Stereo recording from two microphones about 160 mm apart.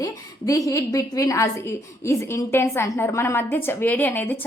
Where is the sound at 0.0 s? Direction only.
20° left (ahead or behind).